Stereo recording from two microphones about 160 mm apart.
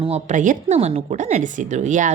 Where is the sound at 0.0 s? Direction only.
45° right (ahead or behind).